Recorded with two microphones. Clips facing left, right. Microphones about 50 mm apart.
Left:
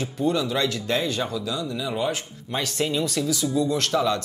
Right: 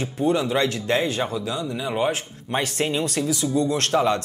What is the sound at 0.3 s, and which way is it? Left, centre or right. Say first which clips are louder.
Speech: right 3 dB; right.